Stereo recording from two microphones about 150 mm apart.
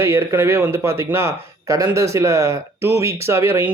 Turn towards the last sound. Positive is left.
turn(degrees=-15)  # may be behind; listen again after turning